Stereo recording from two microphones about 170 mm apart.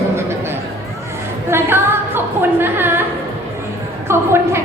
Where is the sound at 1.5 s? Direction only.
15° right (ahead or behind).